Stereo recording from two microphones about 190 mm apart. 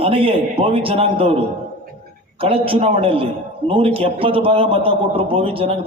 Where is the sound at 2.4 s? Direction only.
30° right (ahead or behind).